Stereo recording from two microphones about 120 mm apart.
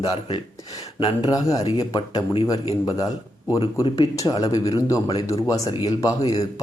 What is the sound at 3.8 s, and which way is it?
Speech, 40° left (ahead or behind).